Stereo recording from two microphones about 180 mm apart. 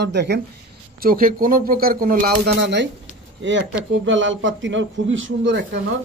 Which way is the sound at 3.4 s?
90° right.